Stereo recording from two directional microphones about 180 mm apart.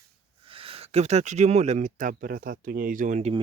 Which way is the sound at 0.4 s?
30° right (ahead or behind).